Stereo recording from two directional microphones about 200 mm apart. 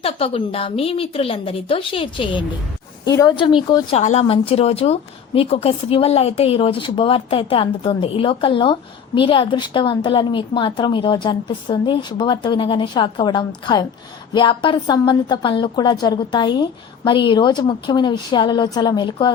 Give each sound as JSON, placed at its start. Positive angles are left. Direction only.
{"t": 0.0, "sound": "speech", "side_deg": 30}